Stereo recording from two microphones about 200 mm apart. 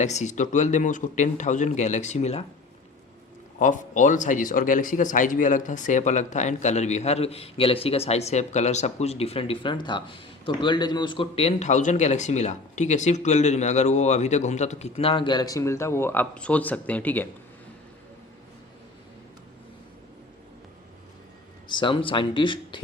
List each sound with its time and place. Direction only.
0.0 s a man's voice: 35° left (ahead or behind)
3.6 s a man's voice: 40° left (ahead or behind); by 17.2 s 10° left (ahead or behind)
21.7 s speech: 25° left (ahead or behind)